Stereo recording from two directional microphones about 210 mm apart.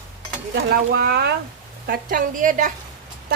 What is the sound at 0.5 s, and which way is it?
A woman's voice, 50° right (ahead or behind).